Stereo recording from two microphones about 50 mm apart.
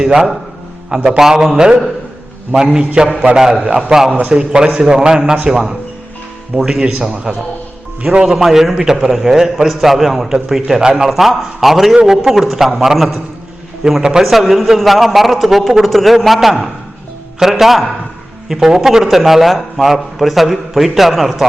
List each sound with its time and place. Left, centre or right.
0.0 s a man's voice: centre
8.4 s a man's voice: centre